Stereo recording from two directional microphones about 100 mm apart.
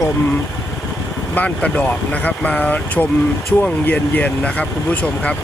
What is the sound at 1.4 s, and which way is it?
Speech, 15° left (ahead or behind).